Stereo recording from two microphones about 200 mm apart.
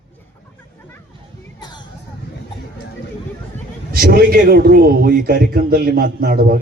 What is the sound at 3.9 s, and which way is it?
A man's voice, 50° right (ahead or behind).